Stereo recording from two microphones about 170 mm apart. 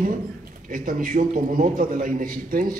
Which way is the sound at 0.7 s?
55° right (ahead or behind).